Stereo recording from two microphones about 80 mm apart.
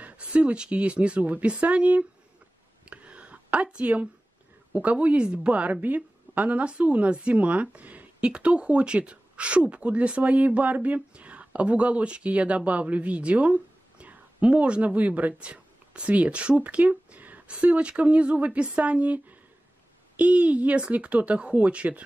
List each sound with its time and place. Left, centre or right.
0.0 s a woman's voice: centre
2.8 s a sound: centre
4.7 s a woman's voice: centre